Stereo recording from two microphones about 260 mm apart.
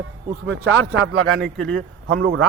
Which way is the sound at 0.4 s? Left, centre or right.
Right.